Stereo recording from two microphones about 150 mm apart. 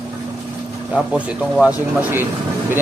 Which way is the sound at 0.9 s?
10° right (ahead or behind).